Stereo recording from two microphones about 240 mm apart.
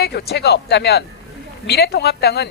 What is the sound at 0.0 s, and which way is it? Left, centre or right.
Speech, left.